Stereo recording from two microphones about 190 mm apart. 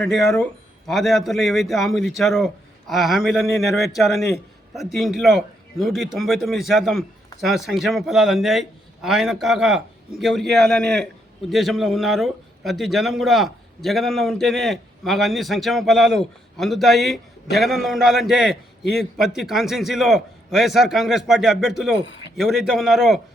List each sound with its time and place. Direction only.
0.0 s a man's voice: centre (ahead or behind)
22.0 s a man's voice: 70° left (ahead or behind)
22.4 s a man's voice: centre (ahead or behind)